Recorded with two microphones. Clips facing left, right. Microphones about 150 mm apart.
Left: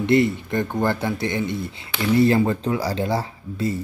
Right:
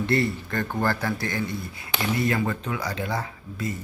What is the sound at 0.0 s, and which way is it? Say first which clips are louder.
Speech: left 6 dB; 20° left (ahead or behind).